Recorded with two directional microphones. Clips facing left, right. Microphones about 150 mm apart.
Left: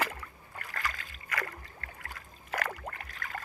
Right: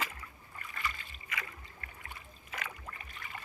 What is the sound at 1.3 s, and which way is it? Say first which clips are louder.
Boat: left 7 dB; 75° left (ahead or behind).